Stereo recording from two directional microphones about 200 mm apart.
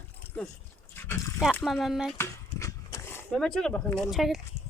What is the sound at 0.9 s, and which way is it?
Dog, 10° left (ahead or behind).